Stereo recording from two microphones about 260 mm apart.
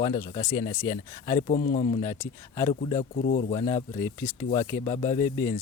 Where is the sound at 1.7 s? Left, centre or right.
Left.